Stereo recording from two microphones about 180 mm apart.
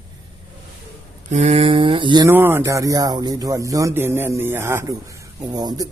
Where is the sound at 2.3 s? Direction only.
10° right (ahead or behind).